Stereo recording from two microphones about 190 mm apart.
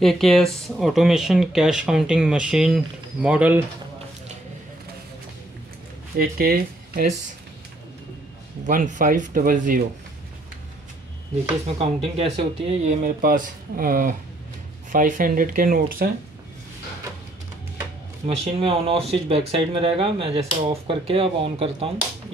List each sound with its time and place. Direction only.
0.0 s speech: centre (ahead or behind)
6.1 s speech: 50° right (ahead or behind)
8.6 s speech: 45° right (ahead or behind)
11.6 s speech: 30° right (ahead or behind)
12.8 s speech: 45° right (ahead or behind)
18.2 s speech: 35° right (ahead or behind)